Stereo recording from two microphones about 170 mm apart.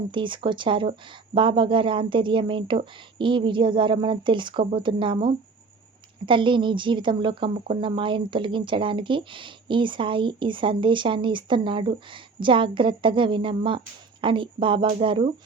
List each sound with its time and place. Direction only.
0.1 s a woman's voice: 30° right (ahead or behind)
6.2 s a woman's voice: 30° right (ahead or behind)